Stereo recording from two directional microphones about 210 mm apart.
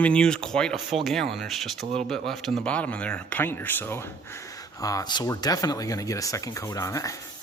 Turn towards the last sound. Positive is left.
turn(degrees=15)  # may be behind; listen again after turning